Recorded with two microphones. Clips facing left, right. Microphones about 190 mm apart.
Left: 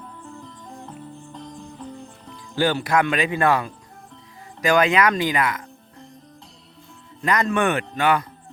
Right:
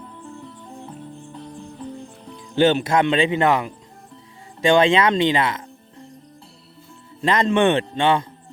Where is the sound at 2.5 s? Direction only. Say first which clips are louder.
Right 4 dB; 25° right (ahead or behind).